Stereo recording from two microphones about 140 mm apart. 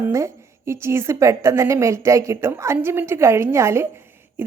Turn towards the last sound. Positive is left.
turn(degrees=-15)  # may be behind; listen again after turning